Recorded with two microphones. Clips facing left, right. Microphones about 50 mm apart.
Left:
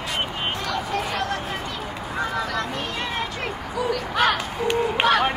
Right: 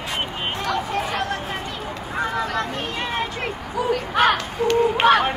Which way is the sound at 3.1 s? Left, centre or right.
Right.